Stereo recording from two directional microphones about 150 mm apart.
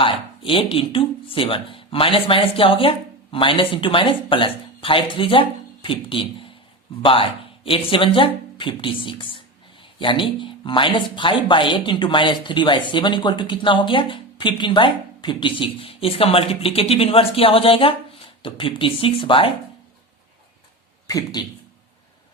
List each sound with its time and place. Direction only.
0.0 s speech: 35° left (ahead or behind)
21.1 s speech: 25° left (ahead or behind)